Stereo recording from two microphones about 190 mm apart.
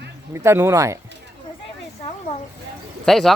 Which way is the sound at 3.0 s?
Centre (ahead or behind).